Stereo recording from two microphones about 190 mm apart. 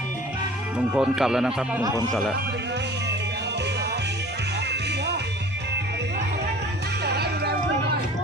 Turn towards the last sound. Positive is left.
turn(degrees=-60)  # may be behind; listen again after turning